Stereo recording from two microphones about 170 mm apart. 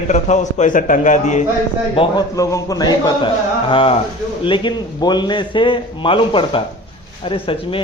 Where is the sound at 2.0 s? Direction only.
20° left (ahead or behind).